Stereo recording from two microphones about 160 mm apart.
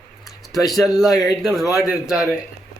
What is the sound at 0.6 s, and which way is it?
Speech, centre (ahead or behind).